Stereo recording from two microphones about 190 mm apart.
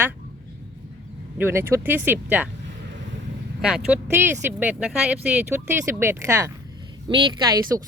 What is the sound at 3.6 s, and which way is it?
Speech, 5° right (ahead or behind).